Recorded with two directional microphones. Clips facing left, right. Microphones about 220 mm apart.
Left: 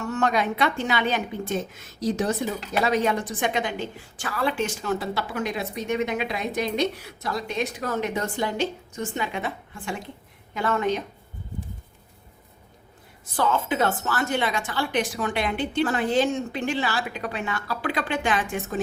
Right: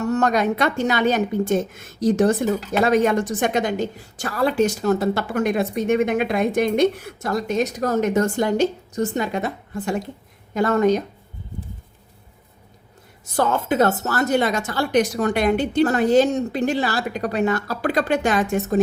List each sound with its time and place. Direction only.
0.0 s a woman's voice: 40° right (ahead or behind)
13.3 s a woman's voice: 45° right (ahead or behind)